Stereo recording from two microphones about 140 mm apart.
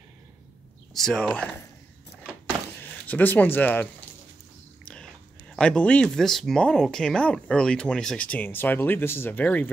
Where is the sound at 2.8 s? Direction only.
15° left (ahead or behind).